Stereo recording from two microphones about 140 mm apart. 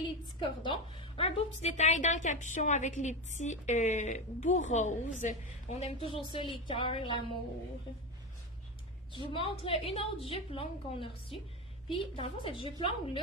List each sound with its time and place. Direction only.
0.7 s a woman's voice: 40° left (ahead or behind)
9.1 s a woman's voice: 40° left (ahead or behind)